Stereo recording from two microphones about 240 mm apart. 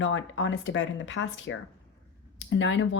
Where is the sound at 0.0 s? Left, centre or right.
Left.